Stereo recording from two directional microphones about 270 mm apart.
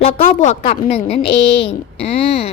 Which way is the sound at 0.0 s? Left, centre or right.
Left.